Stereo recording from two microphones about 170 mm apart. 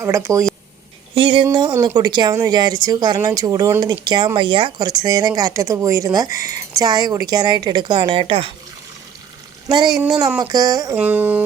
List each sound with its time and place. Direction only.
0.0 s music: 15° right (ahead or behind)
1.1 s a woman's voice: 30° right (ahead or behind)
9.6 s a woman's voice: 25° right (ahead or behind)
10.9 s music: 10° right (ahead or behind)